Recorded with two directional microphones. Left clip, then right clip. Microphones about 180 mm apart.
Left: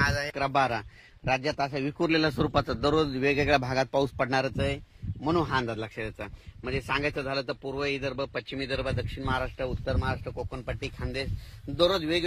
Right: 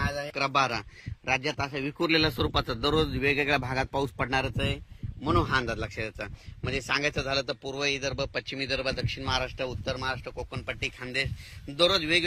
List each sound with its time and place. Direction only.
0.0 s a sound: centre (ahead or behind)
0.5 s speech: 45° left (ahead or behind)
2.3 s speech: 35° left (ahead or behind)
3.2 s speech: 55° left (ahead or behind)
5.5 s speech: 40° left (ahead or behind)
9.9 s speech: 45° left (ahead or behind)